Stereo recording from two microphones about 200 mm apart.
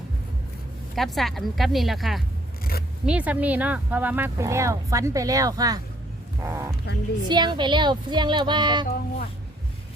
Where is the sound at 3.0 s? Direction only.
5° right (ahead or behind); by 8.8 s 20° right (ahead or behind).